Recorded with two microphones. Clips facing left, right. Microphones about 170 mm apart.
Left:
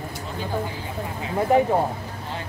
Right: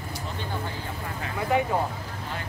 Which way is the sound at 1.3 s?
40° left (ahead or behind).